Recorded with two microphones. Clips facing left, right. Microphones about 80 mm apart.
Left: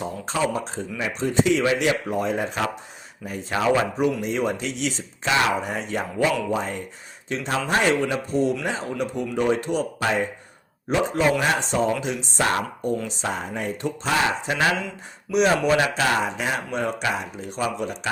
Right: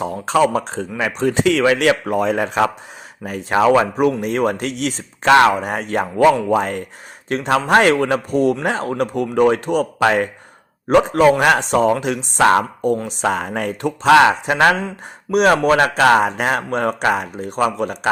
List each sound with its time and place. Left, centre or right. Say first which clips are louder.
0.0 s speech: right 9 dB; right